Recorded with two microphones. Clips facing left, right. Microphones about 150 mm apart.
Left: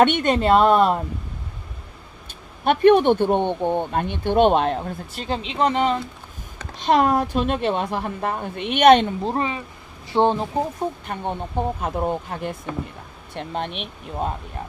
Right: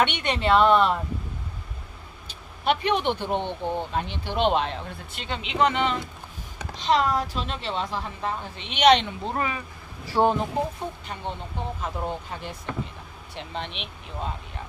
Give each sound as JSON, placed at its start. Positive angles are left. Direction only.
{"t": 0.0, "sound": "speech", "side_deg": 45}
{"t": 2.2, "sound": "speech", "side_deg": 50}
{"t": 6.8, "sound": "speech", "side_deg": 55}
{"t": 9.2, "sound": "speech", "side_deg": 30}
{"t": 11.8, "sound": "speech", "side_deg": 55}